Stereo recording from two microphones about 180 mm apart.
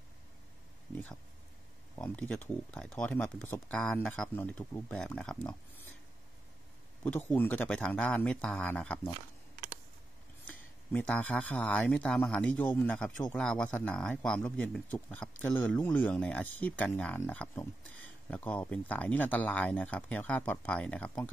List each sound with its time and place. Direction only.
2.0 s a man's voice: 10° left (ahead or behind)
7.0 s a man's voice: 10° left (ahead or behind)
10.9 s a man's voice: 10° left (ahead or behind)